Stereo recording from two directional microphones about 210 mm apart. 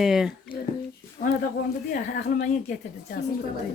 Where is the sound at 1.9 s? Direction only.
50° left (ahead or behind).